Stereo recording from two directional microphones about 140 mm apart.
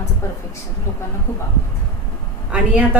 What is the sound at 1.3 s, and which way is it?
Speech, 20° left (ahead or behind).